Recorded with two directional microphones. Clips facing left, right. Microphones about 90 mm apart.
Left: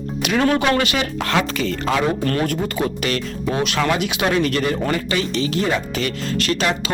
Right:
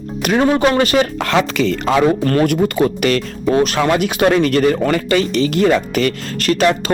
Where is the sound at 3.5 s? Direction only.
40° right (ahead or behind).